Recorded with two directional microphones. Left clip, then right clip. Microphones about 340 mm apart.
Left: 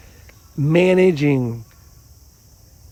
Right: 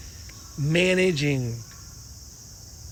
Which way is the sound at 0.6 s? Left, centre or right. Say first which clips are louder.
Left 7 dB; centre.